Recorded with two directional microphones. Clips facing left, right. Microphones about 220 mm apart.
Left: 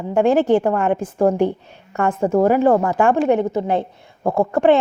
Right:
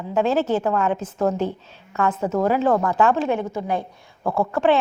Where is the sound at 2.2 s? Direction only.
45° left (ahead or behind).